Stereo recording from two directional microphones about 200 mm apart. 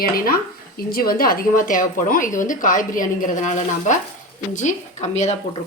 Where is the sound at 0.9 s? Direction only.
45° left (ahead or behind).